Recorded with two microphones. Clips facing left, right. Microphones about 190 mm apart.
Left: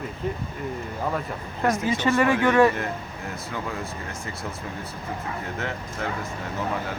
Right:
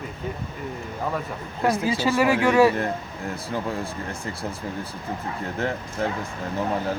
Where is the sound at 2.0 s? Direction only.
10° right (ahead or behind).